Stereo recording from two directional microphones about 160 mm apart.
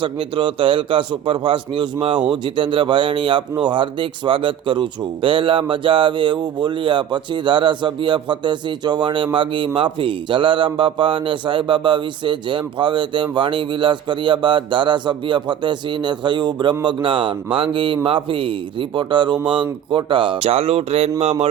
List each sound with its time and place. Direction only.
0.0 s speech: 30° right (ahead or behind)